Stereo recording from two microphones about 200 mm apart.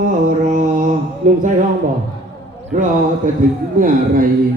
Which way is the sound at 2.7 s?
40° right (ahead or behind).